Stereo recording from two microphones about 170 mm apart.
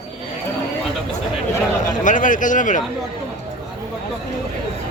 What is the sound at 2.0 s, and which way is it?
Speech, 50° left (ahead or behind).